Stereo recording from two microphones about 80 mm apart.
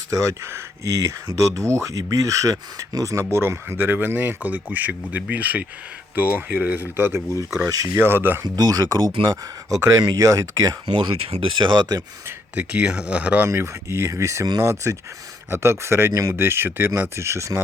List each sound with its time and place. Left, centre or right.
0.1 s speech: right
3.3 s speech: right
8.4 s speech: right
9.7 s speech: right
10.8 s speech: right
12.5 s speech: centre
13.5 s speech: right